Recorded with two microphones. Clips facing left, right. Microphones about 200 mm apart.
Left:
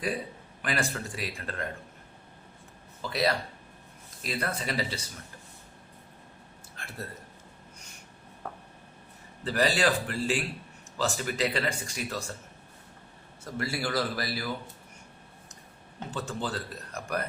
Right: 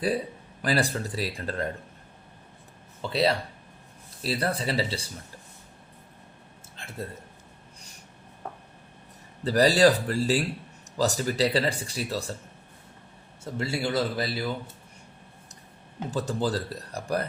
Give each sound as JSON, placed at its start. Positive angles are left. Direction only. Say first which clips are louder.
{"t": 0.6, "sound": "speech", "louder": "right 5 dB", "side_deg": -35}
{"t": 3.0, "sound": "speech", "louder": "right 3 dB", "side_deg": -30}
{"t": 6.8, "sound": "a sound", "louder": "right 1 dB", "side_deg": -25}
{"t": 9.4, "sound": "speech", "louder": "right 7 dB", "side_deg": -40}
{"t": 13.4, "sound": "speech", "louder": "right 3 dB", "side_deg": -25}
{"t": 16.1, "sound": "speech", "louder": "right 6 dB", "side_deg": -40}